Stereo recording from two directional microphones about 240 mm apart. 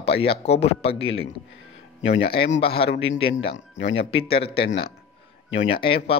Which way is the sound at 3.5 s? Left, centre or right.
Left.